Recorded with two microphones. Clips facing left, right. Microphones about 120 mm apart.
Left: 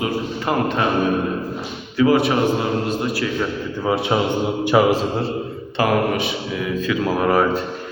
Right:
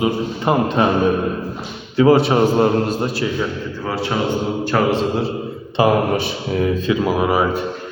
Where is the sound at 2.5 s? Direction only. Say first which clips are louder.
Right 5 dB; 40° right (ahead or behind).